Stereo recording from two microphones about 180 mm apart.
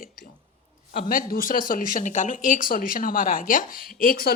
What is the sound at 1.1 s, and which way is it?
Speech, 50° left (ahead or behind).